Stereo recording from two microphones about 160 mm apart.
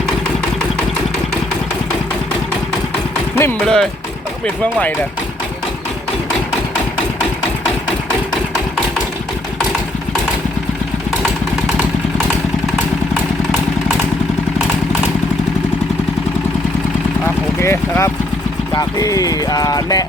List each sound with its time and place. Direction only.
3.3 s speech: 5° left (ahead or behind)
17.2 s a sound: 15° left (ahead or behind)
18.7 s speech: 25° left (ahead or behind)